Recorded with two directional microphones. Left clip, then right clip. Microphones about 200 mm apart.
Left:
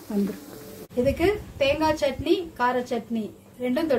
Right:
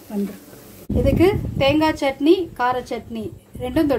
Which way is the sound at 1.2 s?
40° right (ahead or behind).